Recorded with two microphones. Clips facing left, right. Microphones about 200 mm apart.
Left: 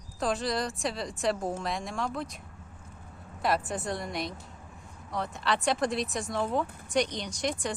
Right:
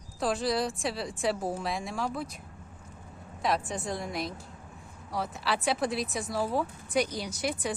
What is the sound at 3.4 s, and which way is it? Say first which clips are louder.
Speech: left 1 dB; centre (ahead or behind).